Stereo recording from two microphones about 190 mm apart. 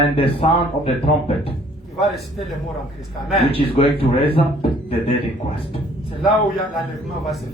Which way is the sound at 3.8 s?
30° left (ahead or behind).